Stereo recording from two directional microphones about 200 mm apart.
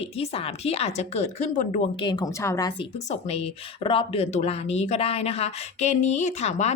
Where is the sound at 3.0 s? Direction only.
35° left (ahead or behind).